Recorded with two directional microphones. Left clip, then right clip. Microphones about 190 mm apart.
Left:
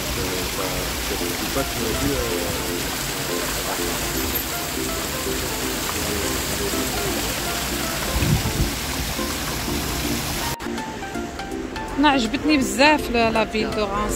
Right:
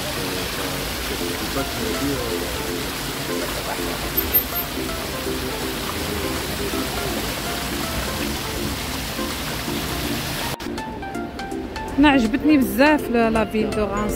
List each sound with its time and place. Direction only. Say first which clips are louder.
12.0 s speech: right 2 dB; 35° right (ahead or behind)